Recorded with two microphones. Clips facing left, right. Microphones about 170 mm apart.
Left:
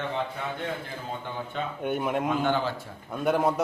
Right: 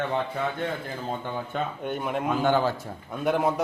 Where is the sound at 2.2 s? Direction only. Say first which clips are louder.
Right 3 dB; 40° right (ahead or behind).